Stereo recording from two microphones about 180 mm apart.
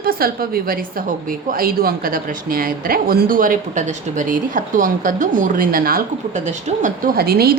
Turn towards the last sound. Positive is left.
turn(degrees=-60)  # may be behind; listen again after turning